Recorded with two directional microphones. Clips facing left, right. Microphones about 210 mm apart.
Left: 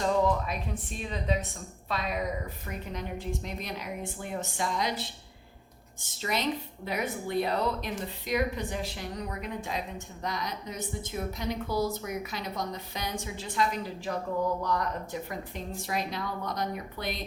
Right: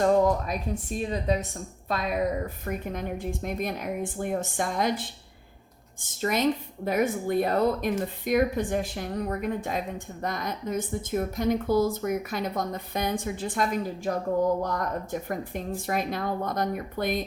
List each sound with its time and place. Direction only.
0.0 s speech: 45° right (ahead or behind)
6.2 s speech: 50° right (ahead or behind)